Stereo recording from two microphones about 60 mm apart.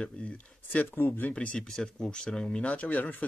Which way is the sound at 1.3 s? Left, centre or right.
Centre.